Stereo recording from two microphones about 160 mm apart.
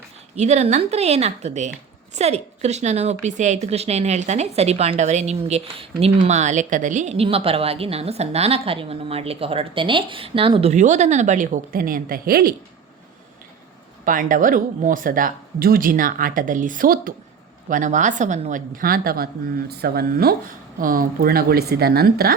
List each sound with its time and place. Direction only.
0.3 s a woman's voice: 45° right (ahead or behind); by 12.5 s 70° right (ahead or behind)
14.0 s speech: 55° right (ahead or behind); by 20.3 s 75° right (ahead or behind)
20.7 s speech: 60° right (ahead or behind)